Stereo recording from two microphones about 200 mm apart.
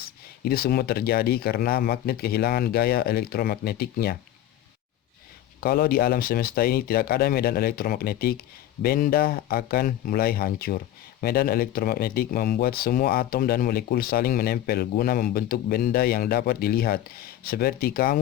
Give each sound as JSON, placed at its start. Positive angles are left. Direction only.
{"t": 0.0, "sound": "speech", "side_deg": 50}
{"t": 5.5, "sound": "speech", "side_deg": 50}